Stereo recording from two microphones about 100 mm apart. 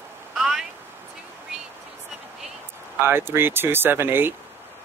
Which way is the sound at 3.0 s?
25° right (ahead or behind).